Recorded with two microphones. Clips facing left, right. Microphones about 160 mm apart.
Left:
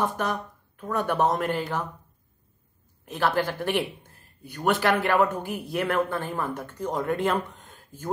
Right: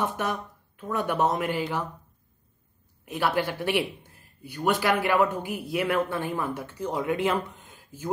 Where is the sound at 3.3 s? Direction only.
45° left (ahead or behind).